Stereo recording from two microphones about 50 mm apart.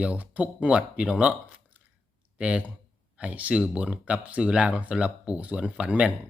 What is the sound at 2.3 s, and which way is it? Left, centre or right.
Speech, right.